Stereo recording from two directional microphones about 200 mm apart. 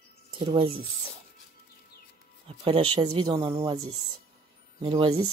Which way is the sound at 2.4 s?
25° right (ahead or behind).